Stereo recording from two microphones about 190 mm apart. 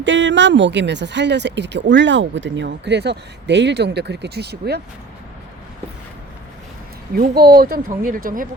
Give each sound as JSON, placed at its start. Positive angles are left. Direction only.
{"t": 0.0, "sound": "speech", "side_deg": -75}
{"t": 7.2, "sound": "speech", "side_deg": -55}